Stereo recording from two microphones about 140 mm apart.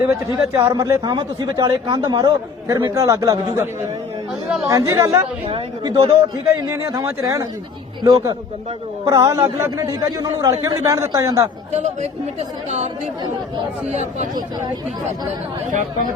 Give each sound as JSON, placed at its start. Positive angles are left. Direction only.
{"t": 0.1, "sound": "speech", "side_deg": -20}
{"t": 4.4, "sound": "speech", "side_deg": -5}
{"t": 4.7, "sound": "speech", "side_deg": -20}
{"t": 5.5, "sound": "speech", "side_deg": -35}
{"t": 6.5, "sound": "speech", "side_deg": -20}
{"t": 13.8, "sound": "speech", "side_deg": -50}